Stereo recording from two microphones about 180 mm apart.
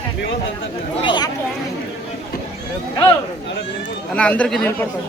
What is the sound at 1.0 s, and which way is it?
Speech, 25° left (ahead or behind).